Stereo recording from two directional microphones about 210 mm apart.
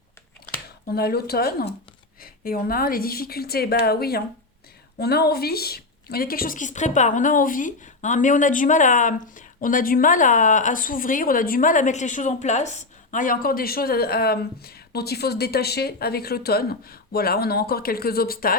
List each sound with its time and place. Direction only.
0.9 s a woman's voice: 50° left (ahead or behind)